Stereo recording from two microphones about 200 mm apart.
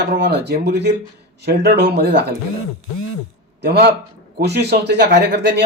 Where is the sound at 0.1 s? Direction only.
55° right (ahead or behind).